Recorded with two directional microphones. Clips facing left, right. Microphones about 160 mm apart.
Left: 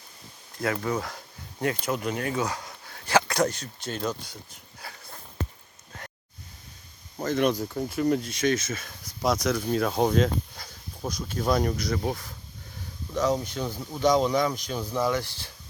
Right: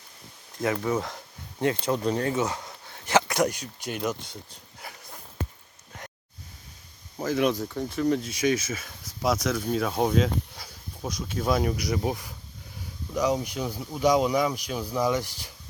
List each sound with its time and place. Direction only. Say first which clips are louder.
0.6 s speech: right 2 dB; 20° right (ahead or behind)
1.6 s speech: right 3 dB; 30° right (ahead or behind)
4.8 s sniff: even; 20° right (ahead or behind)
7.2 s speech: even; 5° right (ahead or behind)